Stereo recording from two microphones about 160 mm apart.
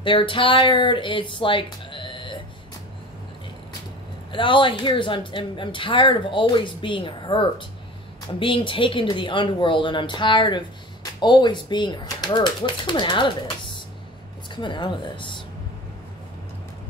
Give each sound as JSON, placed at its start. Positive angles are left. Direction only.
{"t": 0.0, "sound": "speech", "side_deg": 30}
{"t": 4.3, "sound": "a woman's voice", "side_deg": 30}
{"t": 14.5, "sound": "speech", "side_deg": 30}